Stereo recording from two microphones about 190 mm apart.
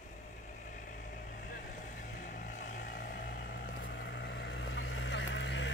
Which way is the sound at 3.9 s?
60° left (ahead or behind).